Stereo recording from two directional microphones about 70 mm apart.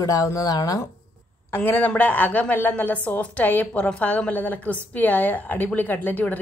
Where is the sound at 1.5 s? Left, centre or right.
Left.